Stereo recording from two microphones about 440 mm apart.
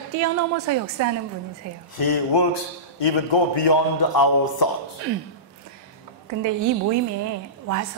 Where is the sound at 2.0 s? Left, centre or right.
Left.